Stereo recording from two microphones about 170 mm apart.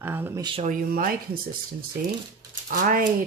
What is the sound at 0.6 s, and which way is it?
Speech, 55° right (ahead or behind).